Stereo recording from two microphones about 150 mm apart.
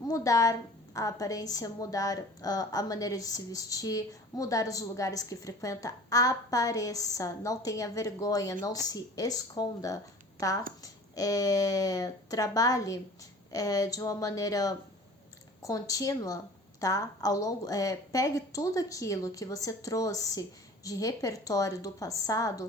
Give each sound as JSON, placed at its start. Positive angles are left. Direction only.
{"t": 0.1, "sound": "a woman's voice", "side_deg": 20}